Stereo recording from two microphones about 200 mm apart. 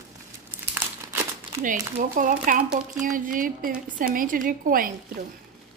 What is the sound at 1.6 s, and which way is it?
A woman's voice, 40° right (ahead or behind).